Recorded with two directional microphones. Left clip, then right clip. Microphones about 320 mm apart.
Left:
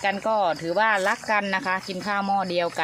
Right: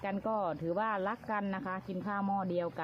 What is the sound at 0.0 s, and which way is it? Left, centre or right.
Speech, centre.